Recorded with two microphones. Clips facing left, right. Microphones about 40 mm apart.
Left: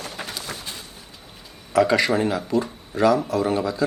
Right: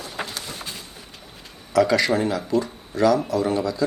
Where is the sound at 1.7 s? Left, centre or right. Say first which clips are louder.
Even; left.